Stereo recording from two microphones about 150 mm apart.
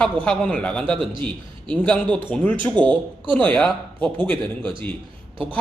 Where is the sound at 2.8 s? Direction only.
30° right (ahead or behind).